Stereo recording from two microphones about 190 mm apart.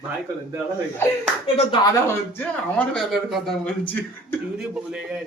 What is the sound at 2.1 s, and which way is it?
Speech, 10° left (ahead or behind).